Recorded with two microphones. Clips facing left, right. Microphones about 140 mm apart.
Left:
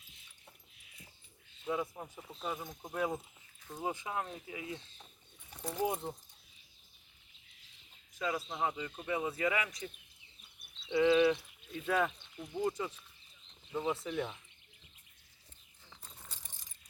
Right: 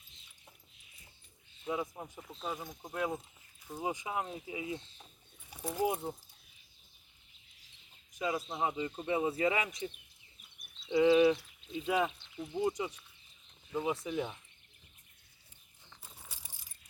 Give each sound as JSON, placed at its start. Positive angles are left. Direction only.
{"t": 1.6, "sound": "speech", "side_deg": -10}
{"t": 2.2, "sound": "speech", "side_deg": 0}
{"t": 3.6, "sound": "speech", "side_deg": -10}
{"t": 5.5, "sound": "speech", "side_deg": -5}
{"t": 8.1, "sound": "speech", "side_deg": -15}
{"t": 10.9, "sound": "speech", "side_deg": -20}
{"t": 13.7, "sound": "speech", "side_deg": 0}
{"t": 13.9, "sound": "speech", "side_deg": -10}
{"t": 15.9, "sound": "keys jangling", "side_deg": -5}